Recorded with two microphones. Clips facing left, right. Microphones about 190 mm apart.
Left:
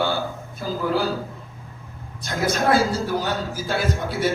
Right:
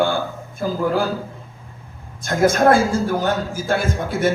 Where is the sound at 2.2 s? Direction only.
50° right (ahead or behind).